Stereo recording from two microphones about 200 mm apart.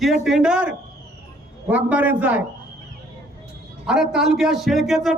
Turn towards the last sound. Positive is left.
turn(degrees=0)  # may be behind; listen again after turning